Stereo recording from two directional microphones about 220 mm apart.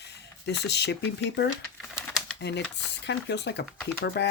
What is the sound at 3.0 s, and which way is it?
Speech, 50° left (ahead or behind).